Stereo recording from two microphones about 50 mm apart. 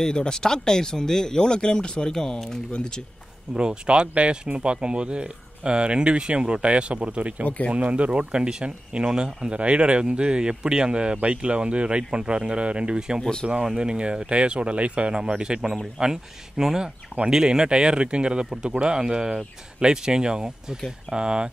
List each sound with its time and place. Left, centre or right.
0.0 s speech: centre
3.5 s speech: centre
7.4 s speech: left
7.7 s speech: right
13.2 s speech: centre
13.7 s speech: centre